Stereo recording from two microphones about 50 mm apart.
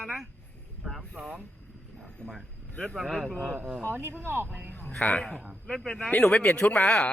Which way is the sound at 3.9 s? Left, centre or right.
Right.